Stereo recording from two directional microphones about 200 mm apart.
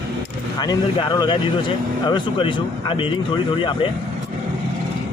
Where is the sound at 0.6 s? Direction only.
20° left (ahead or behind).